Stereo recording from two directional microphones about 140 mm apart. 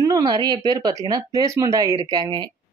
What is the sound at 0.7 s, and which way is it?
Speech, 25° right (ahead or behind).